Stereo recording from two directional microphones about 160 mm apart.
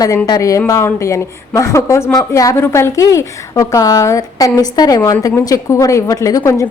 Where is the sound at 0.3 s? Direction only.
20° left (ahead or behind).